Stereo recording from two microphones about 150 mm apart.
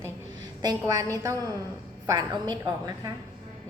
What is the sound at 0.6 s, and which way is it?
A woman's voice, 25° right (ahead or behind).